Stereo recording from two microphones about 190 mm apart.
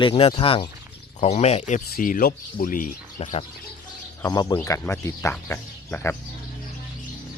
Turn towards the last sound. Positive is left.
turn(degrees=10)  # may be behind; listen again after turning